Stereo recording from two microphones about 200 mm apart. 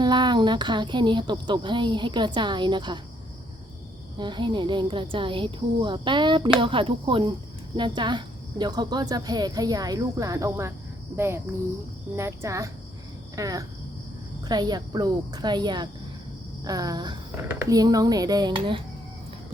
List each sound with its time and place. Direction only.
0.0 s speech: 20° right (ahead or behind)
4.2 s speech: 25° right (ahead or behind)
12.1 s speech: 15° right (ahead or behind)